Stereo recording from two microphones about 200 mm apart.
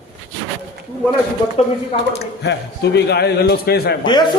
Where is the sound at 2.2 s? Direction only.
55° left (ahead or behind).